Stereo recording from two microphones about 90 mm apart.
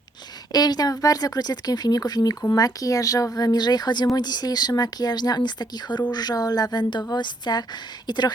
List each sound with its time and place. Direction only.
0.5 s speech: 45° left (ahead or behind)